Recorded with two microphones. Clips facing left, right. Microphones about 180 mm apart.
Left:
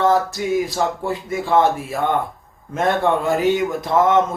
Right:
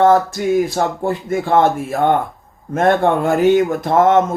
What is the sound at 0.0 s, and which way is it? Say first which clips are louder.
Speech: right 5 dB; 50° right (ahead or behind).